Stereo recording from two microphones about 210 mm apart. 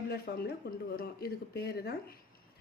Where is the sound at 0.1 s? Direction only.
45° left (ahead or behind).